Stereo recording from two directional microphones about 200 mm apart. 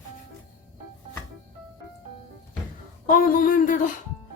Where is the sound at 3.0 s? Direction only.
45° left (ahead or behind).